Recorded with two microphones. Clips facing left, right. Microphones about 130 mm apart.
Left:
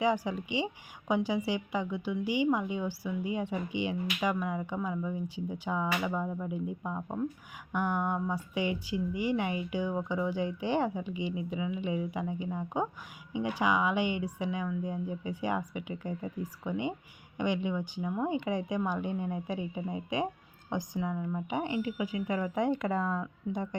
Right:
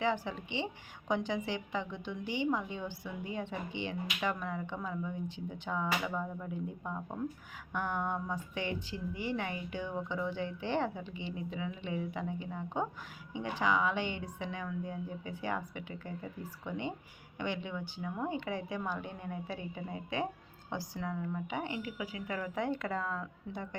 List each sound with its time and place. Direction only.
0.0 s a woman's voice: 10° left (ahead or behind)